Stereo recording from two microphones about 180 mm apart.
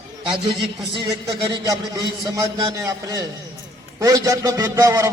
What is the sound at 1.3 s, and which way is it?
A man's voice, 20° right (ahead or behind).